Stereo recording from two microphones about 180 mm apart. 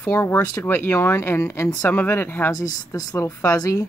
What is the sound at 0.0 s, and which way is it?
Speech, 10° left (ahead or behind).